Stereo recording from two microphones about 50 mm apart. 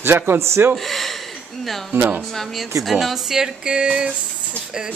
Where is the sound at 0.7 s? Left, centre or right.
Centre.